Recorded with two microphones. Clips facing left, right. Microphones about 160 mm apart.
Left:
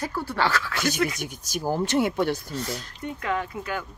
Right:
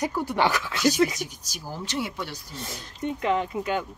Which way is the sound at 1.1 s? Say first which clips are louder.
Left 4 dB; 55° left (ahead or behind).